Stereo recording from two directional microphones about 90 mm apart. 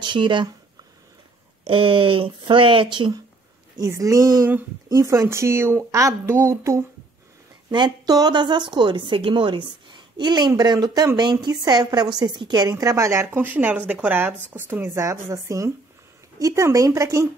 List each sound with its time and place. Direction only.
0.0 s speech: 65° right (ahead or behind)
1.6 s speech: 75° right (ahead or behind)
3.8 s a woman's voice: 35° right (ahead or behind)
7.7 s a woman's voice: 55° right (ahead or behind); by 15.0 s 25° right (ahead or behind)
15.0 s a woman's voice: 35° right (ahead or behind)